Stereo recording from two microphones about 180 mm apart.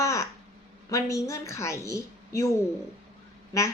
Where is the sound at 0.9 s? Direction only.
20° left (ahead or behind).